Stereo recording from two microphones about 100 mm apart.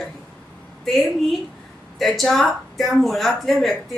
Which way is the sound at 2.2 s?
Centre (ahead or behind).